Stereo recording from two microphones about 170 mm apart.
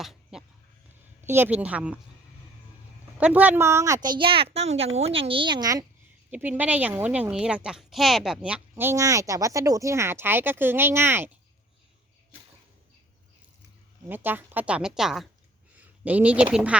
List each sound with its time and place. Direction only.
0.0 s a sound: centre (ahead or behind)
1.2 s speech: 15° right (ahead or behind)
3.2 s a woman's voice: 10° right (ahead or behind)
6.3 s speech: 10° right (ahead or behind)
14.1 s speech: 10° right (ahead or behind)